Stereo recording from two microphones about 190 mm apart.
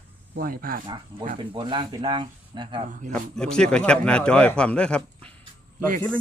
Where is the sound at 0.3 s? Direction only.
50° right (ahead or behind).